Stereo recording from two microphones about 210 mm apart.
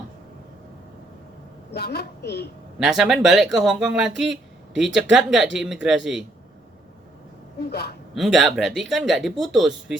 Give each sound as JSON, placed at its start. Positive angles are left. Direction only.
{"t": 1.7, "sound": "a woman's voice", "side_deg": 50}
{"t": 2.7, "sound": "speech", "side_deg": 0}
{"t": 7.7, "sound": "a woman's voice", "side_deg": 50}
{"t": 8.1, "sound": "speech", "side_deg": 0}